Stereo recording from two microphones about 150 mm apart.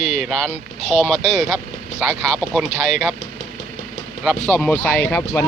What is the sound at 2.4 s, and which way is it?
Speech, centre (ahead or behind).